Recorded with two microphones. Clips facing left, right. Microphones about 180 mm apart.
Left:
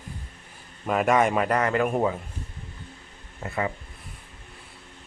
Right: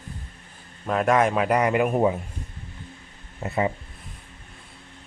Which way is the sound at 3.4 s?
25° right (ahead or behind).